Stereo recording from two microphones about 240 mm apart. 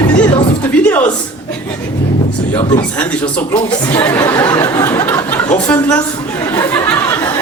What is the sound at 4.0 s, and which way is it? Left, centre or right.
Speech, centre.